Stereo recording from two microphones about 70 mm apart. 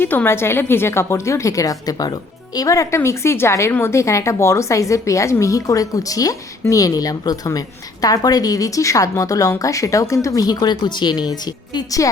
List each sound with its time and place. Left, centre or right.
0.0 s a woman's voice: left
11.9 s a woman's voice: left